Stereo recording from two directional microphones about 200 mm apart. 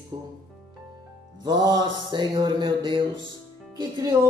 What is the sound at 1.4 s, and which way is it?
Mantra, 20° right (ahead or behind).